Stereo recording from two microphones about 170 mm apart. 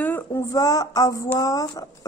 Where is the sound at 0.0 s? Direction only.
15° left (ahead or behind).